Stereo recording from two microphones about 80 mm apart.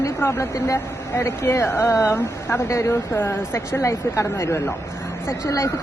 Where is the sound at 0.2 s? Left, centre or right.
Left.